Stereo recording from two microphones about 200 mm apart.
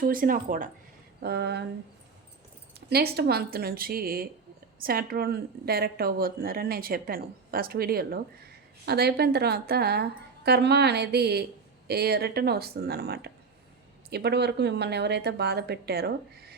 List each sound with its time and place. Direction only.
0.0 s a woman's voice: 45° right (ahead or behind)
1.2 s speech: 55° right (ahead or behind)
2.9 s a woman's voice: 50° right (ahead or behind)